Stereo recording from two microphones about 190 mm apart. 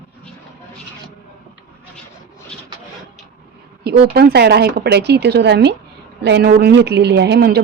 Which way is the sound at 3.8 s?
60° right (ahead or behind).